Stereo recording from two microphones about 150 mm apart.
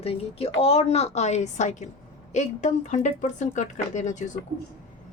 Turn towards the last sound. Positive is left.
turn(degrees=55)  # may be behind; listen again after turning